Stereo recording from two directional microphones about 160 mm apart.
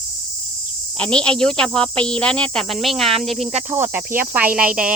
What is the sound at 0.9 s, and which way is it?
Speech, 5° left (ahead or behind).